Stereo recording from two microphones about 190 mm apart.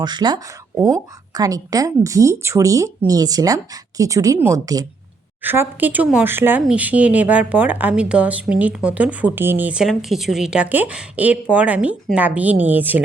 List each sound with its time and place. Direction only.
0.0 s speech: 20° right (ahead or behind)